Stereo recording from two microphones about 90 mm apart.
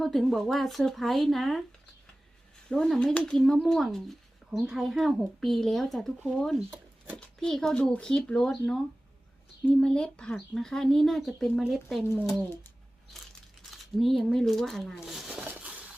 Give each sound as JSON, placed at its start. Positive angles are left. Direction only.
{"t": 0.0, "sound": "speech", "side_deg": 0}
{"t": 2.6, "sound": "speech", "side_deg": 5}
{"t": 14.0, "sound": "speech", "side_deg": 0}
{"t": 15.3, "sound": "a sound", "side_deg": -15}